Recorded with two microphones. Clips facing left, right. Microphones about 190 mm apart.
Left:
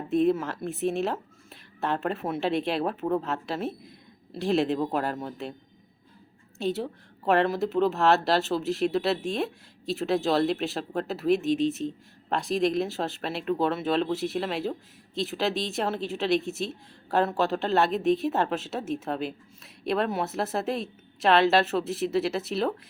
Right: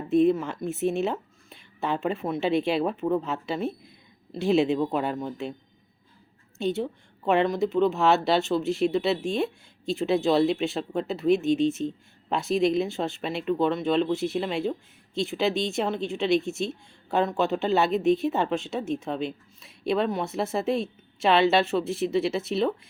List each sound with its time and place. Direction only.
0.1 s speech: centre (ahead or behind)
6.6 s speech: centre (ahead or behind)